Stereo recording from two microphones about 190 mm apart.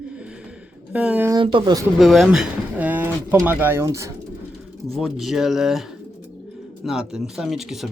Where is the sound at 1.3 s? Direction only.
25° right (ahead or behind).